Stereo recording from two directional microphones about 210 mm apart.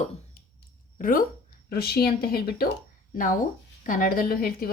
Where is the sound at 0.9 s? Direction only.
40° left (ahead or behind).